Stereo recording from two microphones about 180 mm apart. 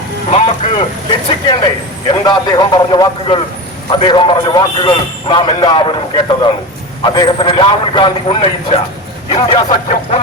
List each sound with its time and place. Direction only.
0.3 s speech: 35° left (ahead or behind)
1.5 s a man's voice: 25° left (ahead or behind)